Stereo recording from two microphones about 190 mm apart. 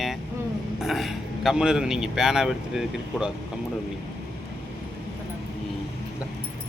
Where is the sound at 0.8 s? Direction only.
Centre (ahead or behind).